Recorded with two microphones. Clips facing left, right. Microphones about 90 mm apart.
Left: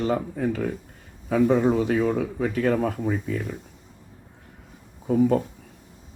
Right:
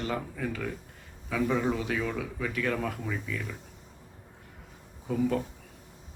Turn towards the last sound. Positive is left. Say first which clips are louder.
# left 8 dB
turn(degrees=40)  # may be behind; listen again after turning